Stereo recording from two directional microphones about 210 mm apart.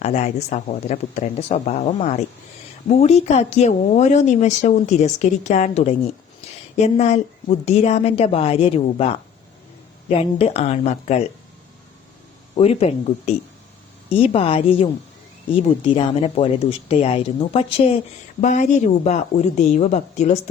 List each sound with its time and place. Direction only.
0.0 s a woman's voice: 35° left (ahead or behind)
12.5 s speech: 30° left (ahead or behind)